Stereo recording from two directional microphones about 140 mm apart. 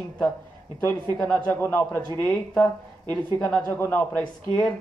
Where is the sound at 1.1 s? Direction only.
10° left (ahead or behind).